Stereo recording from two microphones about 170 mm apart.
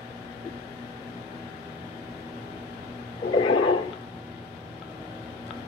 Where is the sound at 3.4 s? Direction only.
30° left (ahead or behind).